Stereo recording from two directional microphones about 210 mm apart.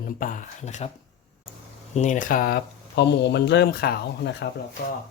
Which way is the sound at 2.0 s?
35° left (ahead or behind).